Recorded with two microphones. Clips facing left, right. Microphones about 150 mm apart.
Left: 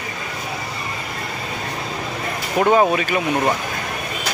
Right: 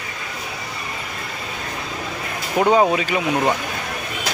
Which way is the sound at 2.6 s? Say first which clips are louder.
Even; 25° right (ahead or behind).